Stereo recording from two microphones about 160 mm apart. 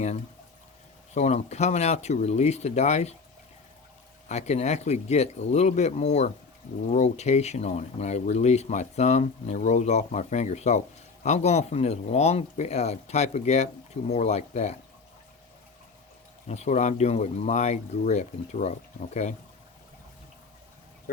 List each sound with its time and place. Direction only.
1.1 s speech: 45° left (ahead or behind)
4.3 s speech: 45° left (ahead or behind)
16.5 s speech: 45° left (ahead or behind)